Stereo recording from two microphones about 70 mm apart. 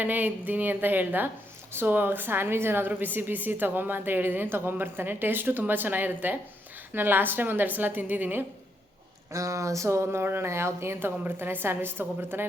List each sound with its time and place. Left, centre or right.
0.0 s a woman's voice: right
9.3 s speech: right